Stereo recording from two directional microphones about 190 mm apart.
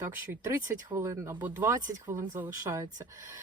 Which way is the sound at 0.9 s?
15° right (ahead or behind).